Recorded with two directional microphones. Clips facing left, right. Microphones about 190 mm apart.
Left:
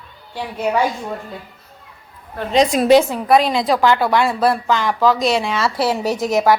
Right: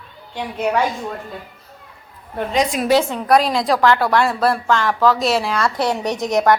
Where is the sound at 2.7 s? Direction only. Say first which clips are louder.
Left 5 dB; 35° left (ahead or behind).